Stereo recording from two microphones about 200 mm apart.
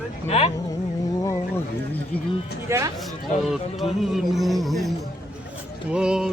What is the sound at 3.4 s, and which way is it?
Music, centre (ahead or behind).